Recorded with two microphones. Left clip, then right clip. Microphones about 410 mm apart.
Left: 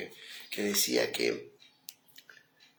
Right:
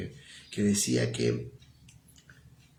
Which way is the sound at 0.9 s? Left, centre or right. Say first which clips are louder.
Left 1 dB; centre.